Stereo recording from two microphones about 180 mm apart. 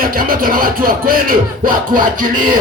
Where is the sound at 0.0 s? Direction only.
55° right (ahead or behind).